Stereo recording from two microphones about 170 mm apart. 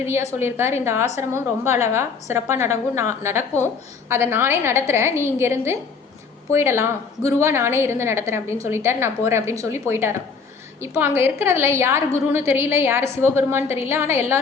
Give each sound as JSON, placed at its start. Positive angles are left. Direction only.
{"t": 0.3, "sound": "a woman's voice", "side_deg": -15}